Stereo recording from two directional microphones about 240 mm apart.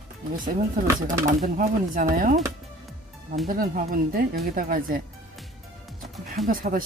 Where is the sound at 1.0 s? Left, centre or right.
Right.